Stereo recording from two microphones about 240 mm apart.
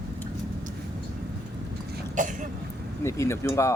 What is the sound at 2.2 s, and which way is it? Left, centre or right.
Cough, right.